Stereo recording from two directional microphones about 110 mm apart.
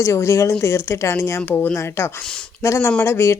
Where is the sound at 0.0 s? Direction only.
25° left (ahead or behind).